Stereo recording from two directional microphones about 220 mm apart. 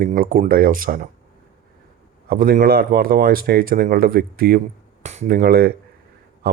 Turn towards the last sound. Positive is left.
turn(degrees=-45)  # may be behind; listen again after turning